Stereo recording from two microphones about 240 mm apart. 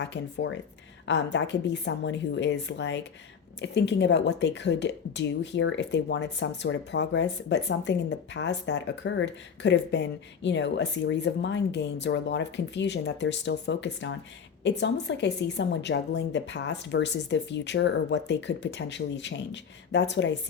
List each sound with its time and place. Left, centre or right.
0.0 s speech: left